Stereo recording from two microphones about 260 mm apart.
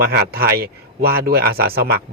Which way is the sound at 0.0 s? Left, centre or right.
Right.